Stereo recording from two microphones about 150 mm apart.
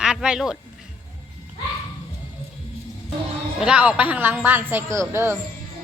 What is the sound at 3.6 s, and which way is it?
A woman's voice, 10° right (ahead or behind).